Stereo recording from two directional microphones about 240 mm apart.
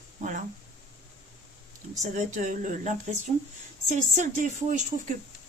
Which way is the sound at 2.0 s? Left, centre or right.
Right.